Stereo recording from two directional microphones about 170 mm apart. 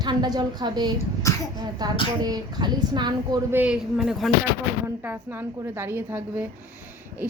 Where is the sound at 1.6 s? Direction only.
25° right (ahead or behind).